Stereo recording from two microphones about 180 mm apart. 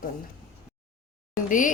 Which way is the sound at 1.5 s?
45° left (ahead or behind).